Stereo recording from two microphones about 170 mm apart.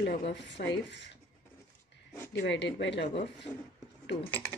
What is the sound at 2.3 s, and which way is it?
Speech, 90° left.